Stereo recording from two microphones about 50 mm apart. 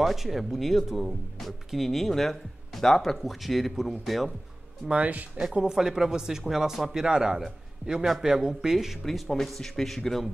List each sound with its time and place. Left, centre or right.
0.0 s speech: centre
4.8 s speech: right
5.4 s speech: centre
9.0 s speech: centre